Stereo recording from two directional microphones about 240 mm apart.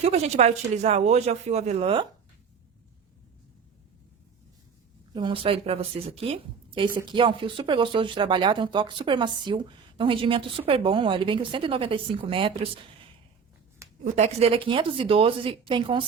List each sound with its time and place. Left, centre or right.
0.0 s speech: right
5.1 s speech: right
14.0 s speech: right